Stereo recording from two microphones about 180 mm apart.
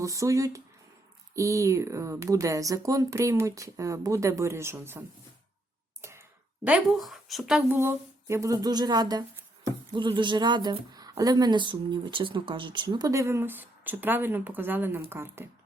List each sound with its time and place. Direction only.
0.0 s speech: 15° right (ahead or behind)
6.0 s a sound: 15° right (ahead or behind)
6.7 s speech: 5° right (ahead or behind)